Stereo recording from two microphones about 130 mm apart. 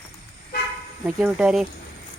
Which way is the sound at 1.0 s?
10° right (ahead or behind).